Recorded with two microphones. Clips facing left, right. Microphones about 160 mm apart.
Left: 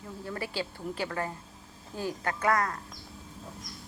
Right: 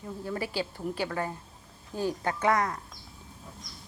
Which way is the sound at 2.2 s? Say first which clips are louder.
Even; 20° right (ahead or behind).